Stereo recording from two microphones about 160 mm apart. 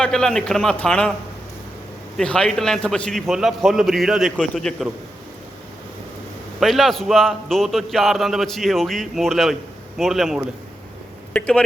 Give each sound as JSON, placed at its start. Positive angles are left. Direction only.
{"t": 0.0, "sound": "a man's voice", "side_deg": 5}
{"t": 2.1, "sound": "a man's voice", "side_deg": 5}
{"t": 6.6, "sound": "a man's voice", "side_deg": 0}